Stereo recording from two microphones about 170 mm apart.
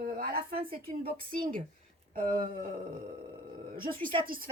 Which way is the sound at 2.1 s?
50° right (ahead or behind).